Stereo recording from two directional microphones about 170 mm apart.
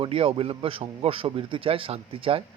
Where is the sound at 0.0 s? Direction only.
35° right (ahead or behind).